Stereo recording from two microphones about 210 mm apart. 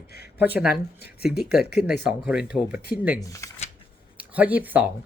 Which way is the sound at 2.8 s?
45° left (ahead or behind).